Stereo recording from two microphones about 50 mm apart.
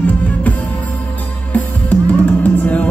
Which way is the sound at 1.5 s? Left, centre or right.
Left.